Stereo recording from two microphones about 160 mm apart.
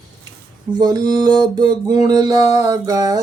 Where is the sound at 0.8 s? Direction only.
25° right (ahead or behind).